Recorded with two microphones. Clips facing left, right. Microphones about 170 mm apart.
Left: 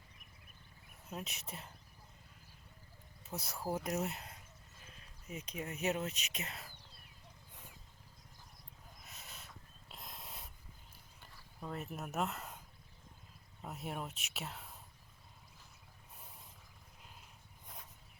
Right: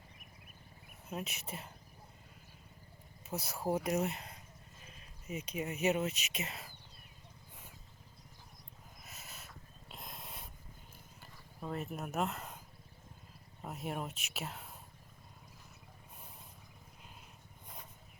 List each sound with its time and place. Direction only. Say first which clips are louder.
1.1 s speech: right 4 dB; centre (ahead or behind)
3.3 s speech: right 4 dB; 20° right (ahead or behind)
3.8 s speech: right 4 dB; centre (ahead or behind)
9.0 s owl: right 2 dB; 5° right (ahead or behind)
9.9 s dog: right 2 dB; centre (ahead or behind)
11.2 s speech: right 3 dB; 5° right (ahead or behind)
13.7 s speech: right 3 dB; centre (ahead or behind)